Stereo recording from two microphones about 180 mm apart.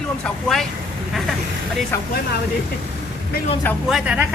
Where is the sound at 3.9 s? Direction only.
5° right (ahead or behind).